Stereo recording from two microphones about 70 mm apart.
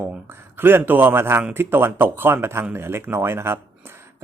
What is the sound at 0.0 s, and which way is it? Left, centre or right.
Speech, right.